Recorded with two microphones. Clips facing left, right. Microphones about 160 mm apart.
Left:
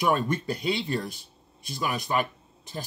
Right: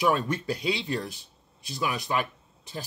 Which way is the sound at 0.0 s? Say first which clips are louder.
Even; centre (ahead or behind).